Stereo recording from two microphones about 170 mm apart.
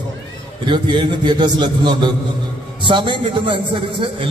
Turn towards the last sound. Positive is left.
turn(degrees=-30)  # may be behind; listen again after turning